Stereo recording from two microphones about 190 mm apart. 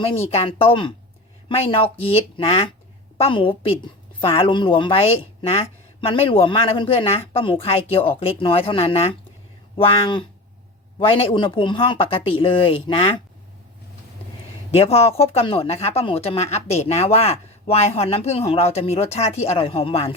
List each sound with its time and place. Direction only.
0.0 s a woman's voice: 30° left (ahead or behind)
14.7 s a woman's voice: 30° left (ahead or behind)